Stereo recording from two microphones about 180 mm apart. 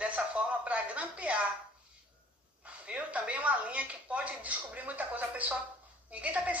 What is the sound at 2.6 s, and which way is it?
A woman's voice, 5° right (ahead or behind).